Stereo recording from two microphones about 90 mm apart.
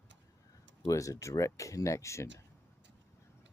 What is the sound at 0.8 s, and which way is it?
Speech, 35° left (ahead or behind).